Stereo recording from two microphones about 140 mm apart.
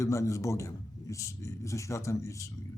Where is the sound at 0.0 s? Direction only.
20° left (ahead or behind).